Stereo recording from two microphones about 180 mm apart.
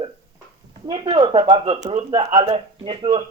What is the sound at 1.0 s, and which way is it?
Speech, 30° right (ahead or behind).